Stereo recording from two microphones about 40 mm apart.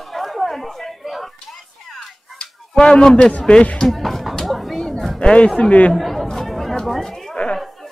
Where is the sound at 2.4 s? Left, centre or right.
Centre.